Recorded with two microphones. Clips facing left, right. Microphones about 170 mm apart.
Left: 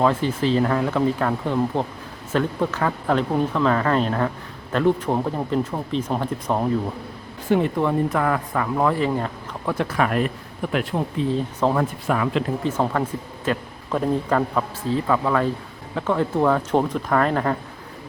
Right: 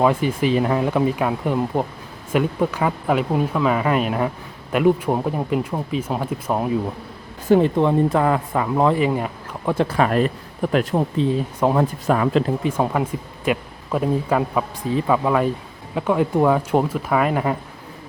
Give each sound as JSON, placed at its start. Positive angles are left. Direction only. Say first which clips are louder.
{"t": 0.0, "sound": "speech", "louder": "right 2 dB", "side_deg": -10}
{"t": 7.8, "sound": "speech", "louder": "right 4 dB", "side_deg": -20}
{"t": 9.7, "sound": "speech", "louder": "right 3 dB", "side_deg": -30}
{"t": 11.6, "sound": "speech", "louder": "right 3 dB", "side_deg": -20}
{"t": 12.0, "sound": "speech", "louder": "right 5 dB", "side_deg": -40}
{"t": 12.6, "sound": "speech", "louder": "right 1 dB", "side_deg": -10}